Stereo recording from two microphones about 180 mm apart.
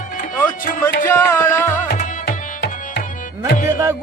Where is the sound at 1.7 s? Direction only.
50° left (ahead or behind).